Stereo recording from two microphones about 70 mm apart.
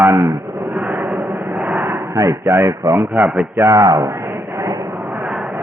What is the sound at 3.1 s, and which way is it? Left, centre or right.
Speech, right.